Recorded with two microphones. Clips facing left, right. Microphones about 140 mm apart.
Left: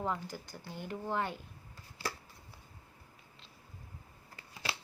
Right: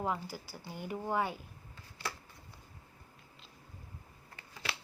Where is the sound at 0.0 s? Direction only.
10° right (ahead or behind).